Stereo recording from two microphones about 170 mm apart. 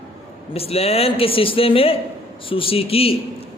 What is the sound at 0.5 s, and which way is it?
A man's voice, 35° left (ahead or behind).